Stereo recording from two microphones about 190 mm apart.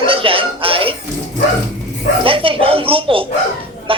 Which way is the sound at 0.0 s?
30° right (ahead or behind).